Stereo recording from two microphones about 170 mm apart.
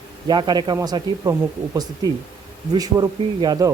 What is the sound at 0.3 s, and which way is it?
Speech, 25° right (ahead or behind).